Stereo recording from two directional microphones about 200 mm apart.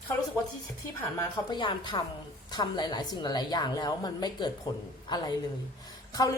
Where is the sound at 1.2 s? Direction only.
20° left (ahead or behind).